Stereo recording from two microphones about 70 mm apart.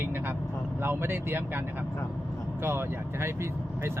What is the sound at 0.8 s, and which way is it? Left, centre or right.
Speech, right.